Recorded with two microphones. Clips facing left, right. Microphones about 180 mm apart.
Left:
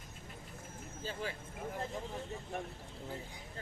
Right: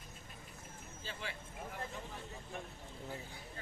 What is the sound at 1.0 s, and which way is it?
Vehicle, 45° left (ahead or behind).